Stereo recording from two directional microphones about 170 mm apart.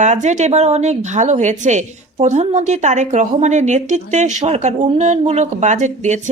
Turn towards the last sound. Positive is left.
turn(degrees=-45)  # may be behind; listen again after turning